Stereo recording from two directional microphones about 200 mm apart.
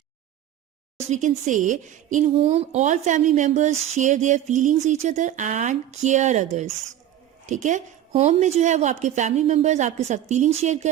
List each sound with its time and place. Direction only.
0.9 s speech: 35° right (ahead or behind)